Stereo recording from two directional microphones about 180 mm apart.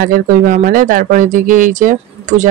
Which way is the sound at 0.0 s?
55° right (ahead or behind).